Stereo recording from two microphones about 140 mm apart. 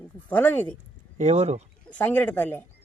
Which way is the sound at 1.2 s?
50° right (ahead or behind).